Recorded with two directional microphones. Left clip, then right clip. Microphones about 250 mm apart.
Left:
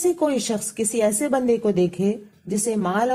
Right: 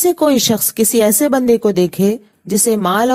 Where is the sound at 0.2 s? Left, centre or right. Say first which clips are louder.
Right 9 dB; right.